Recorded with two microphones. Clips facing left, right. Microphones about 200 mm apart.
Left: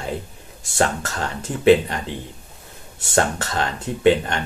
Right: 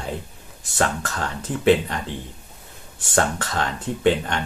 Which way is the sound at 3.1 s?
25° left (ahead or behind).